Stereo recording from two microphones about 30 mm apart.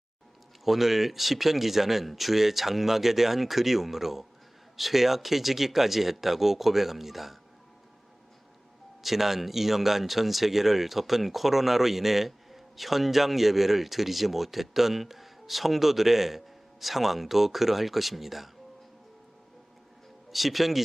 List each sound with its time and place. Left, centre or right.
0.6 s speech: centre
9.0 s speech: centre
20.3 s speech: centre